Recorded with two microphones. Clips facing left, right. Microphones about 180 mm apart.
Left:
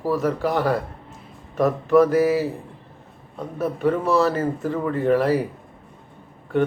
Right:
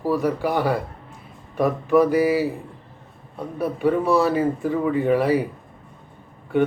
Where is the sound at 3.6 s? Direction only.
Centre (ahead or behind).